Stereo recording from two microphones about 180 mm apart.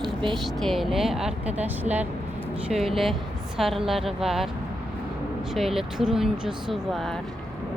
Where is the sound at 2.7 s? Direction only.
Centre (ahead or behind).